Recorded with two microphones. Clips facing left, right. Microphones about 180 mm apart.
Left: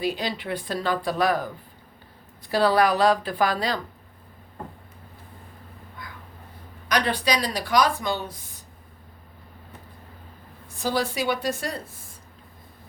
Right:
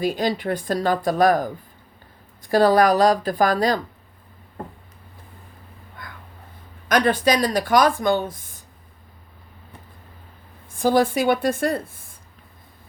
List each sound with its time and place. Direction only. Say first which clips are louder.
0.0 s speech: right 5 dB; 45° right (ahead or behind)
6.8 s speech: right 6 dB; 50° right (ahead or behind)
10.8 s speech: right 7 dB; 50° right (ahead or behind)